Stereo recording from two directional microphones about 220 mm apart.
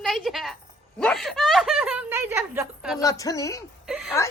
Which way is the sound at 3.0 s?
15° left (ahead or behind).